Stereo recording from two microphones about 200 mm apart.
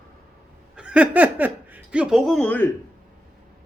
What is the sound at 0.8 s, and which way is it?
Speech, 5° right (ahead or behind).